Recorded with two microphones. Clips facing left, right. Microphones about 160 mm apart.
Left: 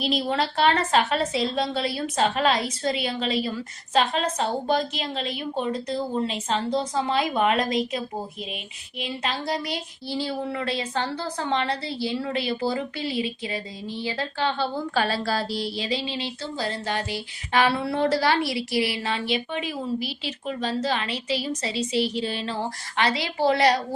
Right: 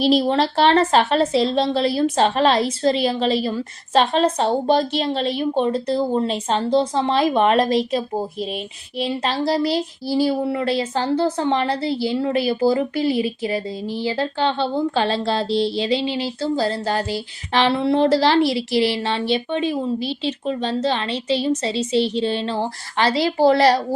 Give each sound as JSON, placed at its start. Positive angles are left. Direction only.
{"t": 0.0, "sound": "a woman's voice", "side_deg": -35}